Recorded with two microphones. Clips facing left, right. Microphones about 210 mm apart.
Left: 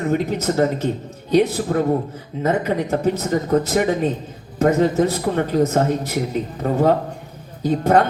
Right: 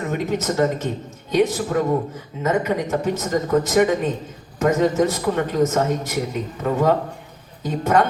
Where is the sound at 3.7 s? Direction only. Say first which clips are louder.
Right 1 dB; 35° left (ahead or behind).